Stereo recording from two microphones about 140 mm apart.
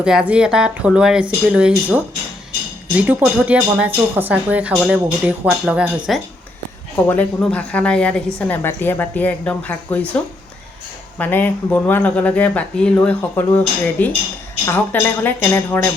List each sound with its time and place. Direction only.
0.0 s speech: 5° right (ahead or behind)
3.0 s speech: 10° right (ahead or behind)
6.9 s speech: 10° left (ahead or behind)
11.2 s speech: 15° left (ahead or behind)